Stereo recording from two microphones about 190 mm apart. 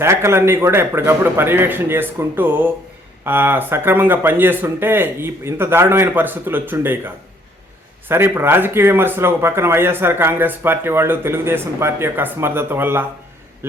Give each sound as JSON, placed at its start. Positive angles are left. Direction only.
{"t": 0.0, "sound": "speech", "side_deg": -15}